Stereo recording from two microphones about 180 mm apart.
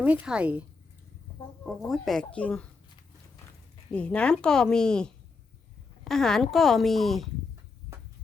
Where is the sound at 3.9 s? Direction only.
5° left (ahead or behind).